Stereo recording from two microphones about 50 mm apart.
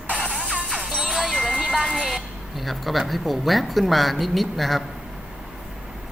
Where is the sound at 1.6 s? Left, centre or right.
Centre.